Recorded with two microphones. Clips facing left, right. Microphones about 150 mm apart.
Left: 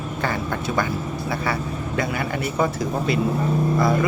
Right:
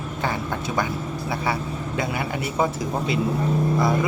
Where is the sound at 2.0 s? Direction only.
20° right (ahead or behind).